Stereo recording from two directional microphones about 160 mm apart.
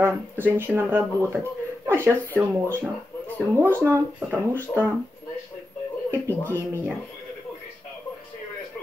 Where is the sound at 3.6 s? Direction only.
15° right (ahead or behind).